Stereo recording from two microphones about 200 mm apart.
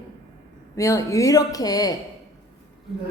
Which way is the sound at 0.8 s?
15° left (ahead or behind).